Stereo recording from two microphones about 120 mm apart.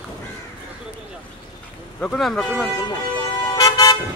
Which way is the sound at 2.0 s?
5° left (ahead or behind).